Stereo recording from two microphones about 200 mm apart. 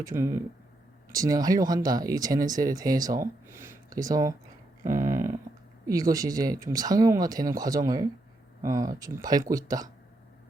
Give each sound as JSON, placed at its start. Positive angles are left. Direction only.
{"t": 0.0, "sound": "speech", "side_deg": -15}
{"t": 4.9, "sound": "a sound", "side_deg": -15}
{"t": 5.8, "sound": "speech", "side_deg": -20}